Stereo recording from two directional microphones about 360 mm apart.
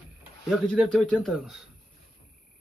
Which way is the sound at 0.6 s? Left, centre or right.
Centre.